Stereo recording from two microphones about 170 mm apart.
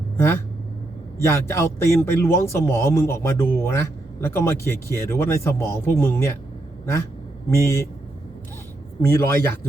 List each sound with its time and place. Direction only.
1.2 s a man's voice: 15° left (ahead or behind)
7.5 s a man's voice: 15° left (ahead or behind)
9.0 s a man's voice: 15° left (ahead or behind)